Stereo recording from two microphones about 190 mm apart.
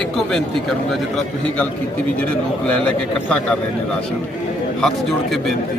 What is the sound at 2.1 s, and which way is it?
Speech, 10° left (ahead or behind).